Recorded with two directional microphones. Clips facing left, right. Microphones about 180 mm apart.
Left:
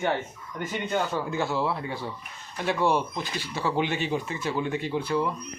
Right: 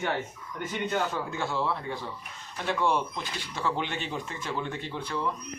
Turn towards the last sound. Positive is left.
turn(degrees=10)  # may be behind; listen again after turning